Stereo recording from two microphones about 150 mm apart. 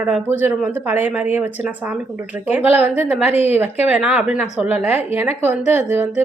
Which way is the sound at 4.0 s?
5° right (ahead or behind).